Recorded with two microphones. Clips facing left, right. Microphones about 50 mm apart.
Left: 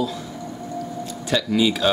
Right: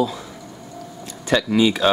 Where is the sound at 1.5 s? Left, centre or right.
Centre.